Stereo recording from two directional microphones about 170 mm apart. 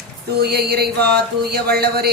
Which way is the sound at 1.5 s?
65° right (ahead or behind).